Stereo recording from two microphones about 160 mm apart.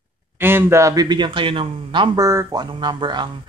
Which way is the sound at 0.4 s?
15° right (ahead or behind).